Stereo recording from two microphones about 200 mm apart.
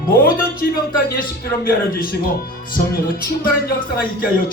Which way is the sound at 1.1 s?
50° left (ahead or behind).